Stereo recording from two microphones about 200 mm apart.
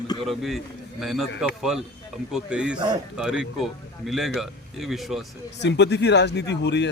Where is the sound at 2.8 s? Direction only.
20° right (ahead or behind).